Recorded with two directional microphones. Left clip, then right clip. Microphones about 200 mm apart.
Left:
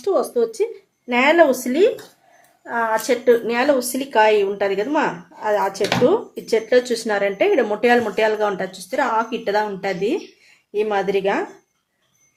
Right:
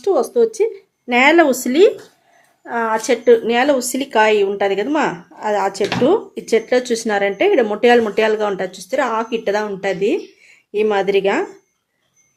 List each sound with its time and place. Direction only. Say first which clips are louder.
0.0 s speech: right 4 dB; 30° right (ahead or behind)